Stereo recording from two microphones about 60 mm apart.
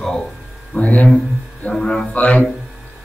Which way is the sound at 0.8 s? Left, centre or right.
Left.